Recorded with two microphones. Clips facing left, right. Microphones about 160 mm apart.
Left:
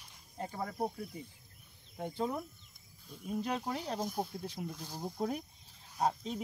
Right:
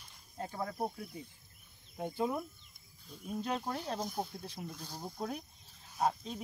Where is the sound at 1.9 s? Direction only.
5° right (ahead or behind); by 5.4 s 10° left (ahead or behind).